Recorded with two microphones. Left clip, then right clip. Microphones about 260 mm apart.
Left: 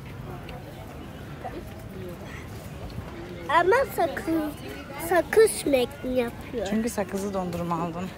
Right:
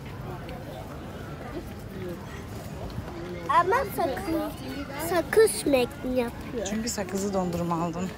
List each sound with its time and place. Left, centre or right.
3.4 s speech: left
5.1 s a woman's voice: centre